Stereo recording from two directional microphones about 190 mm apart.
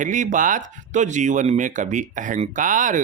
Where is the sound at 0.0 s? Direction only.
40° right (ahead or behind).